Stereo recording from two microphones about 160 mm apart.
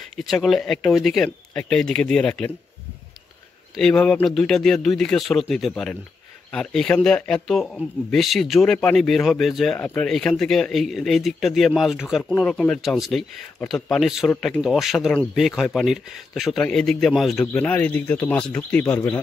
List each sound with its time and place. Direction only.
0.1 s speech: centre (ahead or behind)
3.7 s speech: 5° left (ahead or behind)